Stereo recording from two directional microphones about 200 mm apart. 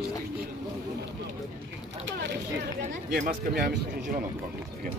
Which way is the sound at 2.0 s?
65° right (ahead or behind).